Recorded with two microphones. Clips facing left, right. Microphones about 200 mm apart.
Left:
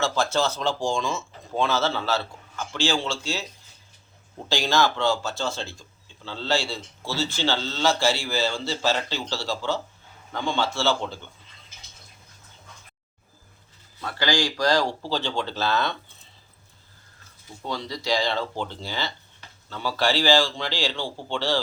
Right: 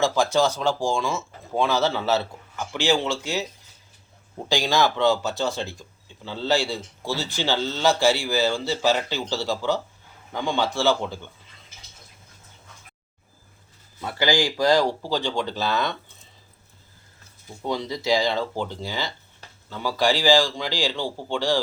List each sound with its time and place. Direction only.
0.0 s speech: 15° right (ahead or behind)
4.4 s speech: 15° right (ahead or behind)
14.0 s speech: 20° right (ahead or behind)
17.7 s speech: 20° right (ahead or behind)